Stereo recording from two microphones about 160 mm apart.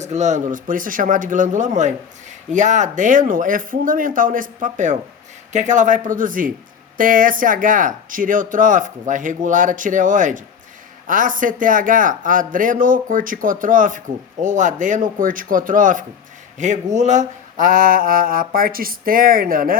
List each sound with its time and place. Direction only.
0.0 s speech: 45° right (ahead or behind); by 19.8 s 60° right (ahead or behind)